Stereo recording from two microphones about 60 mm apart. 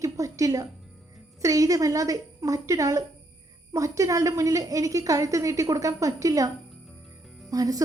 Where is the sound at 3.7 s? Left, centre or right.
Right.